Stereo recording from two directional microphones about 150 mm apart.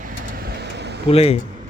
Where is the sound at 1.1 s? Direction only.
40° left (ahead or behind).